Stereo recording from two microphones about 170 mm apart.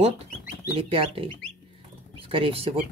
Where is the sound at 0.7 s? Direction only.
35° right (ahead or behind).